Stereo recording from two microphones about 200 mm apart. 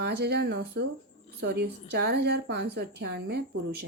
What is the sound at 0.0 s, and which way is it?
A woman's voice, 55° right (ahead or behind).